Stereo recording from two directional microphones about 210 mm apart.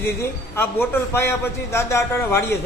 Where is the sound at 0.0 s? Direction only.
10° left (ahead or behind).